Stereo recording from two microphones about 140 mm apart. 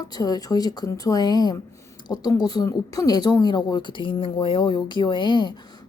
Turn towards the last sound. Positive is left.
turn(degrees=35)  # may be behind; listen again after turning